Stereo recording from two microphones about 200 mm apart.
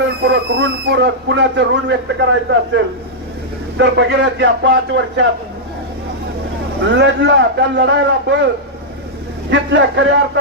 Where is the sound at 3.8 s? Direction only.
60° right (ahead or behind).